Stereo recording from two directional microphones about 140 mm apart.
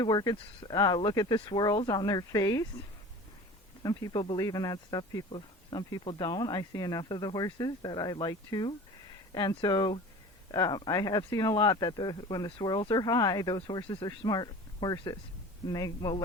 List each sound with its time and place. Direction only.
0.0 s speech: 30° left (ahead or behind)
3.8 s speech: 30° left (ahead or behind)